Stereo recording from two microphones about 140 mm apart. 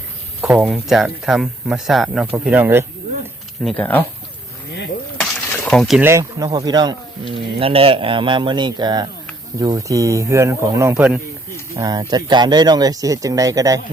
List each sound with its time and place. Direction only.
0.4 s speech: 10° right (ahead or behind)
3.6 s speech: centre (ahead or behind)
5.2 s a sound: 5° left (ahead or behind)
6.0 s speech: 20° right (ahead or behind)
10.9 s speech: 10° right (ahead or behind)
11.8 s speech: 30° right (ahead or behind)